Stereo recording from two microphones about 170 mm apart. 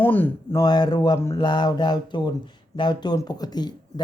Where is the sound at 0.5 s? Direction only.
25° left (ahead or behind).